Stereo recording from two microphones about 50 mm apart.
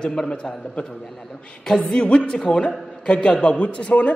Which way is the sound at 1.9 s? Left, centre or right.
Centre.